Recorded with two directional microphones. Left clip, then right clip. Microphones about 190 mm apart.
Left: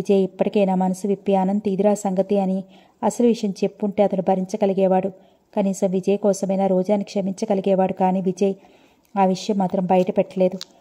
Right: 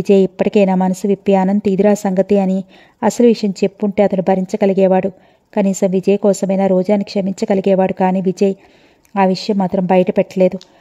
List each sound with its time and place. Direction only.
0.0 s a woman's voice: 35° right (ahead or behind)